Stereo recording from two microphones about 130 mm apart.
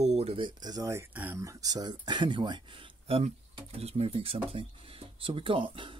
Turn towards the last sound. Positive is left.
turn(degrees=-40)  # may be behind; listen again after turning